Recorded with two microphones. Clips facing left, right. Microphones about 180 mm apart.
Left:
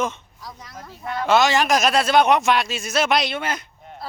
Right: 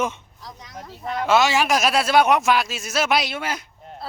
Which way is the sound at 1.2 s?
5° right (ahead or behind).